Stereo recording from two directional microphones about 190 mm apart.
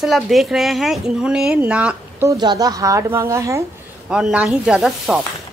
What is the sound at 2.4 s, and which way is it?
Speech, 20° right (ahead or behind).